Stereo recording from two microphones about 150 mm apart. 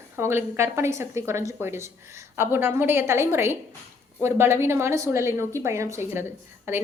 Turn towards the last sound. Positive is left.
turn(degrees=-15)  # may be behind; listen again after turning